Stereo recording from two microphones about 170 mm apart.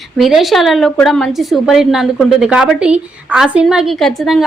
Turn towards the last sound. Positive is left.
turn(degrees=0)  # may be behind; listen again after turning